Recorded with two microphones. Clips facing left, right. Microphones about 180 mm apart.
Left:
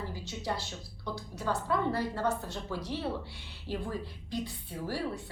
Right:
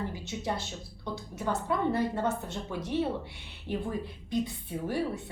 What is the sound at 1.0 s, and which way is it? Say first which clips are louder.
A woman's voice: right 1 dB; 20° right (ahead or behind).